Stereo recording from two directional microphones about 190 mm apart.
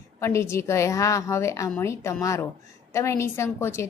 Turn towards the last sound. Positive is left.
turn(degrees=15)  # may be behind; listen again after turning